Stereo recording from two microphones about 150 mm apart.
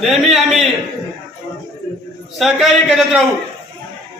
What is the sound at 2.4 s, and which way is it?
Speech, centre (ahead or behind).